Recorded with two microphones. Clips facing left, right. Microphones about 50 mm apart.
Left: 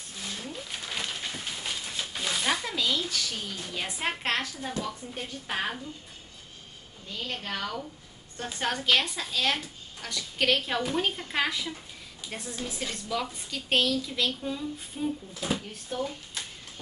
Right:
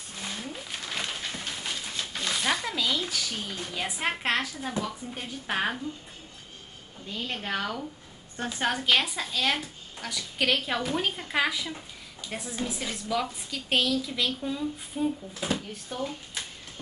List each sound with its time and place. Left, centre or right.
0.4 s roaring cats: centre
0.8 s a sound: centre
3.7 s a woman's voice: centre
5.5 s speech: centre
7.1 s a woman's voice: centre